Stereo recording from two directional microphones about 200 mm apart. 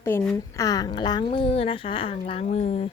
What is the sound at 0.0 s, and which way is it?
A woman's voice, 10° left (ahead or behind).